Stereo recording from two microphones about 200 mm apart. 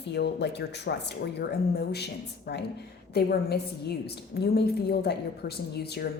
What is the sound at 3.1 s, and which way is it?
Speech, 55° left (ahead or behind).